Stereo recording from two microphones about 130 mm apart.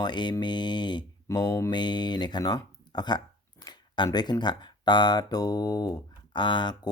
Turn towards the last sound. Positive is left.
turn(degrees=35)  # may be behind; listen again after turning